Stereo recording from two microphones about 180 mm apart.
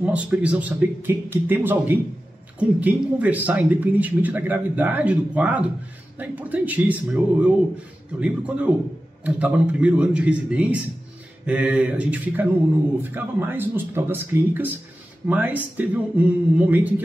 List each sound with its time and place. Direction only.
0.0 s speech: 10° right (ahead or behind)